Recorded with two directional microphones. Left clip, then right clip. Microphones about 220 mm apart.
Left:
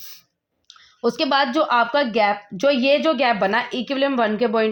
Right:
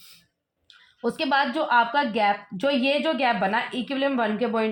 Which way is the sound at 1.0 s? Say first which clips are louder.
Left 4 dB; 40° left (ahead or behind).